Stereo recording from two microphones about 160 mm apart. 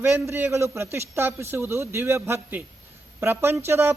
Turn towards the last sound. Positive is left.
turn(degrees=-15)  # may be behind; listen again after turning